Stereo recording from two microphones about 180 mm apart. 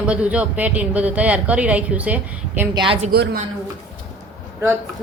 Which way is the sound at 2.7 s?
30° right (ahead or behind).